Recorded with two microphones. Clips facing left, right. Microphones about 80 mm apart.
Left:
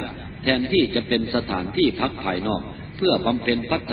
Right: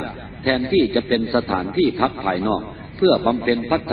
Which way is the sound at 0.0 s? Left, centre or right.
Right.